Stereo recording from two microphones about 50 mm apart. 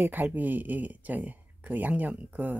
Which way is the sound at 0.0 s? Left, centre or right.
Right.